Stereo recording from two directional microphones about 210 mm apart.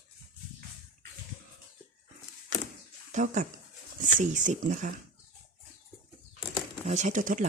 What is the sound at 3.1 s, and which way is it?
Speech, 35° right (ahead or behind).